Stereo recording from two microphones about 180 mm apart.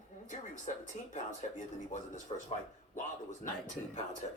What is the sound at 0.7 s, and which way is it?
Speech, 40° left (ahead or behind).